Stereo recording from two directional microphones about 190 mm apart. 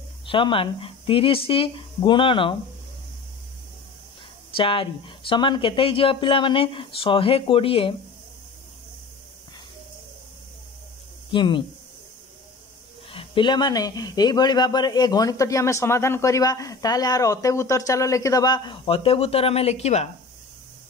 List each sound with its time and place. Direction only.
0.3 s speech: 25° left (ahead or behind)
4.6 s speech: 25° left (ahead or behind)
11.2 s speech: 25° left (ahead or behind)
13.1 s speech: 25° left (ahead or behind)